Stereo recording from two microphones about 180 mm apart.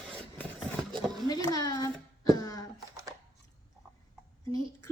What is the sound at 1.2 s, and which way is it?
Speech, 20° left (ahead or behind).